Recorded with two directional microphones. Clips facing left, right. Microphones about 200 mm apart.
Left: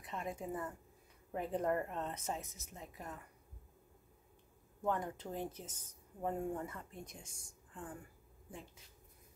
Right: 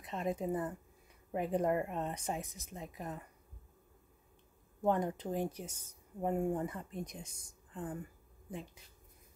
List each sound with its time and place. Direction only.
0.0 s a woman's voice: 20° right (ahead or behind)
4.8 s speech: 20° right (ahead or behind)